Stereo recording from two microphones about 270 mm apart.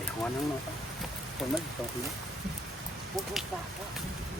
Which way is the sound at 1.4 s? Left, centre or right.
Centre.